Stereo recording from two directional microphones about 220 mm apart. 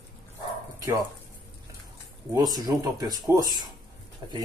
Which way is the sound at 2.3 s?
15° right (ahead or behind).